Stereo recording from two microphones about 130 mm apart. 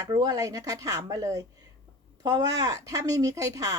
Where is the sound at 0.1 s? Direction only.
25° right (ahead or behind).